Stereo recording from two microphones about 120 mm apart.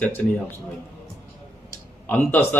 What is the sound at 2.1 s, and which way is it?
Speech, 15° left (ahead or behind).